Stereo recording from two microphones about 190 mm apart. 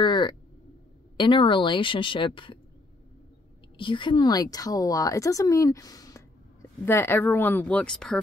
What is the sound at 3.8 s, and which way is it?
A woman's voice, 25° left (ahead or behind).